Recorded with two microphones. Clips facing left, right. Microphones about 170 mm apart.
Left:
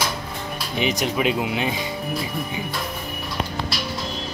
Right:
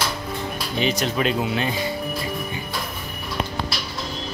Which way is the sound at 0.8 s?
15° left (ahead or behind).